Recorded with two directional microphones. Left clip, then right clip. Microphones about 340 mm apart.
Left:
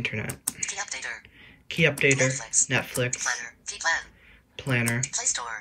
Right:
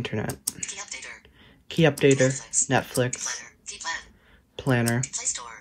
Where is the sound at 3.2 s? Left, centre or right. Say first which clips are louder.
Left 5 dB; centre.